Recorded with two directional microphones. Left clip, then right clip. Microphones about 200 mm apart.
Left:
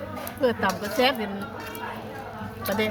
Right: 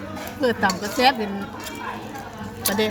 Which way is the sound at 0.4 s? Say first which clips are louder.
Right 3 dB; 30° right (ahead or behind).